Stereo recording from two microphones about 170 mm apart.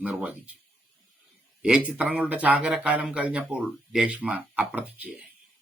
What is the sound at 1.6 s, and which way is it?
Speech, 5° right (ahead or behind).